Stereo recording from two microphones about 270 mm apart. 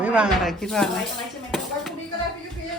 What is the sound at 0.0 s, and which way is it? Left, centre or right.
Speech, centre.